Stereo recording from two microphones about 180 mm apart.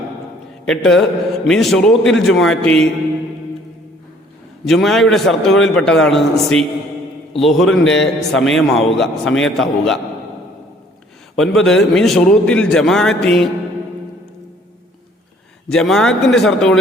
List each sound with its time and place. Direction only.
0.7 s a man's voice: centre (ahead or behind)
4.6 s a man's voice: centre (ahead or behind)
11.3 s a man's voice: centre (ahead or behind)
15.7 s a man's voice: 5° left (ahead or behind)